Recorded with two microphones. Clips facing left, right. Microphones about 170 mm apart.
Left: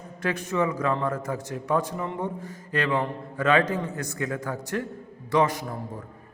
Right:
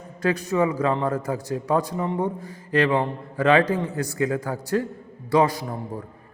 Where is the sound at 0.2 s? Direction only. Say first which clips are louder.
Right 4 dB; 35° right (ahead or behind).